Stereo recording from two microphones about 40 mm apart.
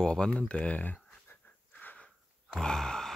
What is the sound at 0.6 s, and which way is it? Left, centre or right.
Speech, left.